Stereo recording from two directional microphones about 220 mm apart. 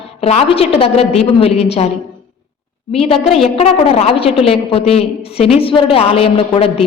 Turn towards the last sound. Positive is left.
turn(degrees=25)  # may be behind; listen again after turning